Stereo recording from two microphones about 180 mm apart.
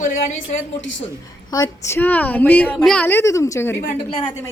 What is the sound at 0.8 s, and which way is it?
Speech, 90° left.